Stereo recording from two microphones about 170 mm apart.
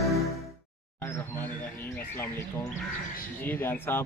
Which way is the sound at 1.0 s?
15° left (ahead or behind).